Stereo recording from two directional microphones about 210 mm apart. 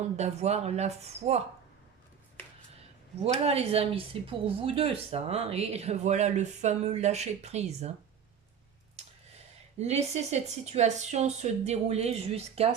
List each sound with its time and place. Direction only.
0.2 s speech: 30° right (ahead or behind)
3.4 s speech: 30° right (ahead or behind)
9.0 s speech: 30° right (ahead or behind)